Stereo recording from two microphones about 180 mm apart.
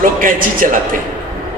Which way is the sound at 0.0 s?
50° right (ahead or behind).